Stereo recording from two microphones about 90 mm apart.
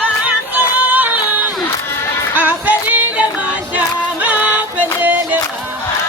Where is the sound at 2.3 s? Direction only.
20° right (ahead or behind).